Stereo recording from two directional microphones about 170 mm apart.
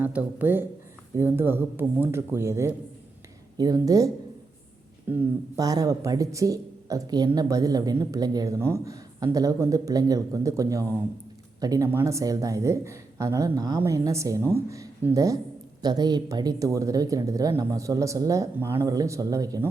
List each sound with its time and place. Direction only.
0.0 s speech: 10° right (ahead or behind)